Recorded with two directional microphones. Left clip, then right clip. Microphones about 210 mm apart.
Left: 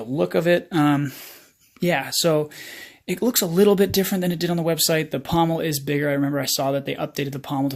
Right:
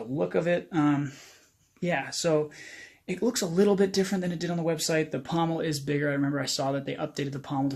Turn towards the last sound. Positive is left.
turn(degrees=35)  # may be behind; listen again after turning